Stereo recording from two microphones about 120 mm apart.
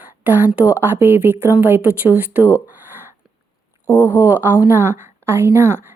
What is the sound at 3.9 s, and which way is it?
A woman's voice, 15° right (ahead or behind).